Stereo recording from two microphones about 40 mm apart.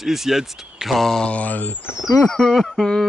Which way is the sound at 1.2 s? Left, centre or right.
Left.